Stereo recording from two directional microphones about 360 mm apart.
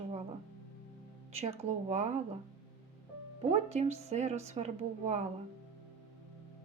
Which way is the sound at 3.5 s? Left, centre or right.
Centre.